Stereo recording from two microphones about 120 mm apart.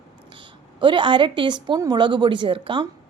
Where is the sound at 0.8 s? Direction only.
40° right (ahead or behind).